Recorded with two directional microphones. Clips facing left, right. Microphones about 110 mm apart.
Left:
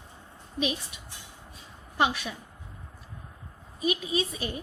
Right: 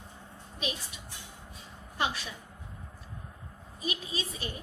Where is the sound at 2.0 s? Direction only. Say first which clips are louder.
Left 6 dB; 65° left (ahead or behind).